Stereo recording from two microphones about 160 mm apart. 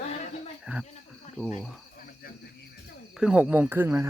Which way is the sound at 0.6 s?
5° right (ahead or behind).